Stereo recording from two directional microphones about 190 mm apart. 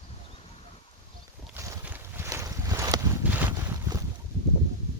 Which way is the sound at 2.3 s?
15° right (ahead or behind).